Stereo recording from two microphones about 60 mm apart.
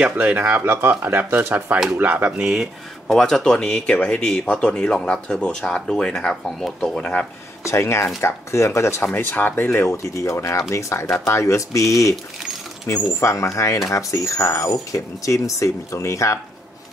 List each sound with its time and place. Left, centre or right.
0.0 s speech: right
0.7 s speech: right
2.3 s speech: centre
7.0 s speech: left
7.6 s speech: left
9.0 s speech: left
10.1 s speech: left